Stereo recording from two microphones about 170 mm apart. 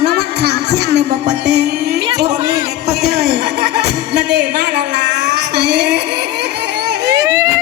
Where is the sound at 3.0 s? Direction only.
75° right (ahead or behind).